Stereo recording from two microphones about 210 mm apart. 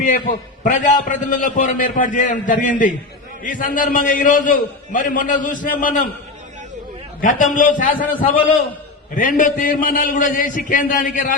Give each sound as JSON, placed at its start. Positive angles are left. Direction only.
{"t": 0.6, "sound": "a man's voice", "side_deg": 40}
{"t": 7.2, "sound": "a man's voice", "side_deg": 40}